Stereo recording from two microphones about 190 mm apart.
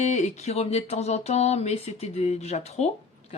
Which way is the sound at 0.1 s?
35° left (ahead or behind).